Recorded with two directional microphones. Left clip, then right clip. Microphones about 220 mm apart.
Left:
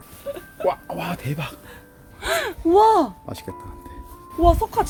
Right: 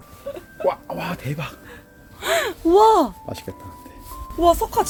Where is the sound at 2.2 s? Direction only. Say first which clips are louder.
Right 2 dB; 30° right (ahead or behind).